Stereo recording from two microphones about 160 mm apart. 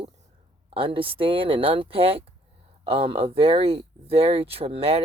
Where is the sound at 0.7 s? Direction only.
35° right (ahead or behind).